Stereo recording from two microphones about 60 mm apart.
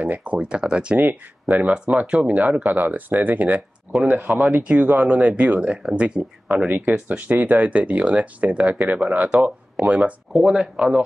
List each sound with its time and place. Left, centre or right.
0.0 s speech: right
0.9 s speech: right
6.7 s speech: right
10.4 s speech: centre